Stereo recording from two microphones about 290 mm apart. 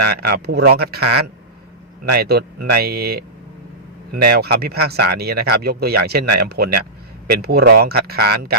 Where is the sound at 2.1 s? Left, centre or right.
Right.